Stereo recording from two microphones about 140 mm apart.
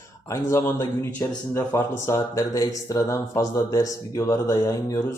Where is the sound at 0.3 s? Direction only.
20° left (ahead or behind).